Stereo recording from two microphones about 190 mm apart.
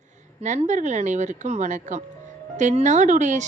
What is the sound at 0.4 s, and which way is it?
A woman's voice, 40° right (ahead or behind).